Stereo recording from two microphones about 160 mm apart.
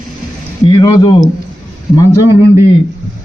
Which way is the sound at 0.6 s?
25° left (ahead or behind).